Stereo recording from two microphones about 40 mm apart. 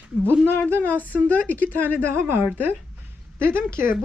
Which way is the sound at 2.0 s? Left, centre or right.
Right.